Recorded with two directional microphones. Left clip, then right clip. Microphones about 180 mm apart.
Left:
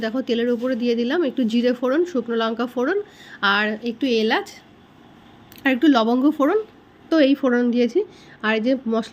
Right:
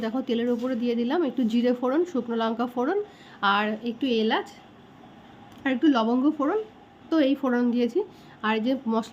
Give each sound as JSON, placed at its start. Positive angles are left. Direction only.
{"t": 0.0, "sound": "speech", "side_deg": 10}
{"t": 5.6, "sound": "a woman's voice", "side_deg": 30}